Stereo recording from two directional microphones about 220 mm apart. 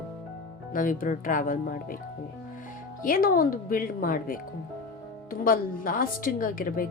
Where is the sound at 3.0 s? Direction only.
40° left (ahead or behind).